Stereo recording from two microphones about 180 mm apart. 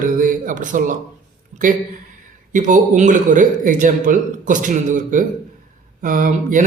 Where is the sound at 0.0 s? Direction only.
45° right (ahead or behind).